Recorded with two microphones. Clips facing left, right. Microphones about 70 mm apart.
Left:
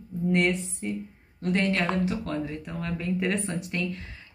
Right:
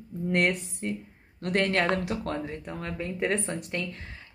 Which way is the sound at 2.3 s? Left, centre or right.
Right.